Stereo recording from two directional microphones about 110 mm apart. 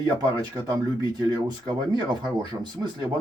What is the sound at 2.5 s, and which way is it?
Speech, 25° right (ahead or behind).